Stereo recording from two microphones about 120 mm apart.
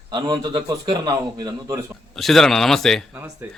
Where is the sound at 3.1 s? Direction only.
20° right (ahead or behind).